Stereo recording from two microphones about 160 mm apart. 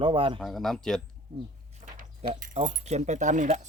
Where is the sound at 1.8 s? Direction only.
50° right (ahead or behind).